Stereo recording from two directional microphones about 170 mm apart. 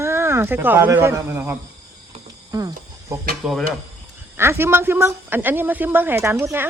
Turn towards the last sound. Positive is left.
turn(degrees=-15)  # may be behind; listen again after turning